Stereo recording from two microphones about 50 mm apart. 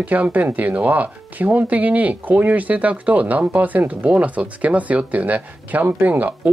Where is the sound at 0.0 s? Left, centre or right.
Right.